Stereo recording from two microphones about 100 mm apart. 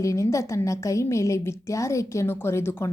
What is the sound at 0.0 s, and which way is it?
A woman's voice, 30° left (ahead or behind).